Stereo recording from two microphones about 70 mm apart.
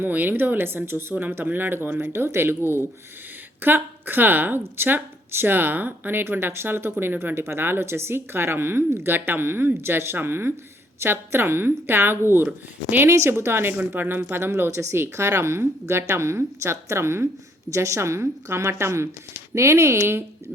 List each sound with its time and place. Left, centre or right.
0.0 s a woman's voice: right
13.1 s a woman's voice: right